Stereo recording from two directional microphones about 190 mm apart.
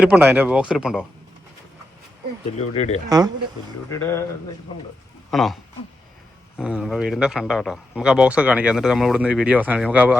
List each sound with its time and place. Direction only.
0.0 s a man's voice: 10° right (ahead or behind)
2.6 s speech: 35° left (ahead or behind)
3.1 s speech: 20° right (ahead or behind)
3.8 s speech: 15° left (ahead or behind)
5.3 s a man's voice: centre (ahead or behind)
6.6 s a man's voice: 5° right (ahead or behind)